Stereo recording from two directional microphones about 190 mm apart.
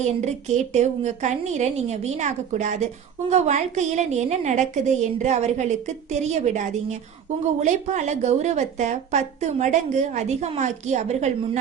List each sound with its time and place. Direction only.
0.2 s a woman's voice: 35° right (ahead or behind)